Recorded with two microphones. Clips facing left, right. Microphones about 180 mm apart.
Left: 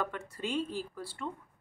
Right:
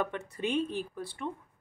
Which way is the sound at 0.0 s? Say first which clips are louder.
Right 3 dB; 20° right (ahead or behind).